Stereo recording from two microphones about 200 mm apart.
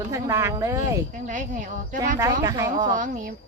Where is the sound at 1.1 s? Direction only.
40° right (ahead or behind).